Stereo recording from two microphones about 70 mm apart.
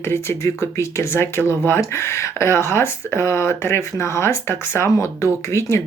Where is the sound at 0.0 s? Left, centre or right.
Left.